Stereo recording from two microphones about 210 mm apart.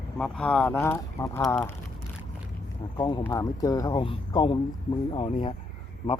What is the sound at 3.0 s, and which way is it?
Speech, 20° left (ahead or behind).